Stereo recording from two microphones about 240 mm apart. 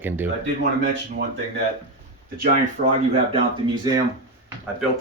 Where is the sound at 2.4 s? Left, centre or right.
Right.